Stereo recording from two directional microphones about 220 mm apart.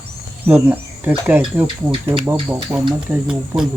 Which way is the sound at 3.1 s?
5° right (ahead or behind).